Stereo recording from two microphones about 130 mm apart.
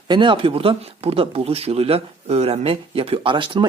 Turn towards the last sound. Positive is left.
turn(degrees=-40)  # may be behind; listen again after turning